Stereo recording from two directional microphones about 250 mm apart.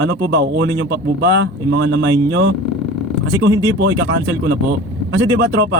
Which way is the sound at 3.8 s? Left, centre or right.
Right.